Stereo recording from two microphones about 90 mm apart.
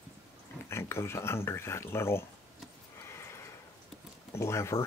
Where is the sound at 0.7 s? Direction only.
30° left (ahead or behind).